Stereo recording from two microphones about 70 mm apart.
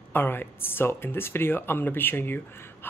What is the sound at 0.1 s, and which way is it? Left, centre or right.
Speech, left.